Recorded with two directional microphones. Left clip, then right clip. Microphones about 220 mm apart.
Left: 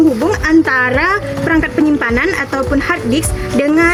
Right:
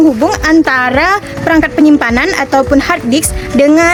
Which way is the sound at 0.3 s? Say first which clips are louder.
Right 3 dB; 50° right (ahead or behind).